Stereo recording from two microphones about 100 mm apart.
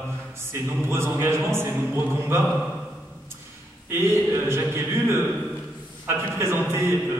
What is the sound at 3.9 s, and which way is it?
A man's voice, 25° right (ahead or behind).